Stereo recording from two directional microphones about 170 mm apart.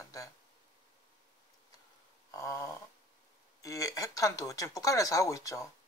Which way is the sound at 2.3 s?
15° left (ahead or behind).